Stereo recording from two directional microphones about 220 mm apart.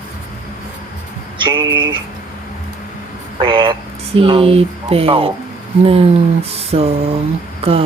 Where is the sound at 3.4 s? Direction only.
20° right (ahead or behind).